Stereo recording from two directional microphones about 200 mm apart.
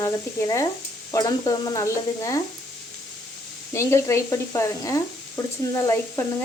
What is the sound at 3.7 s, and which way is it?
Speech, 15° left (ahead or behind).